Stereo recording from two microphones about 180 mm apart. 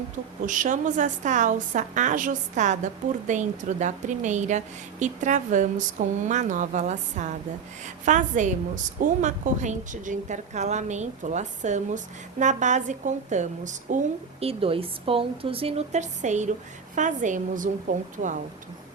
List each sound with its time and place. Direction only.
0.4 s a woman's voice: 45° right (ahead or behind)
14.4 s a woman's voice: 30° right (ahead or behind)